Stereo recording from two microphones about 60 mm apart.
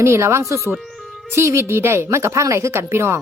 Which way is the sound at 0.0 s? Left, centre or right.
Right.